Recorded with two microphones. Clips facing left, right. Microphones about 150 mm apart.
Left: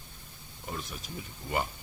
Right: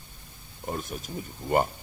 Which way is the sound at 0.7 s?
45° right (ahead or behind).